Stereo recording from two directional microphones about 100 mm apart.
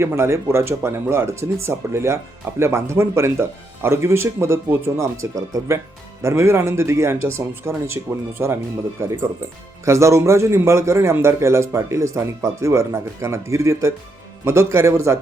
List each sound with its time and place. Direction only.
0.0 s a man's voice: 25° right (ahead or behind)